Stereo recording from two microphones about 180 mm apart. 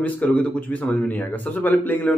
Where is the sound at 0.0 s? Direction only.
10° left (ahead or behind).